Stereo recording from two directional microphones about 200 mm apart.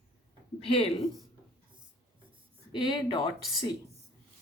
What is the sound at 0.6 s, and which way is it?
Speech, 30° left (ahead or behind).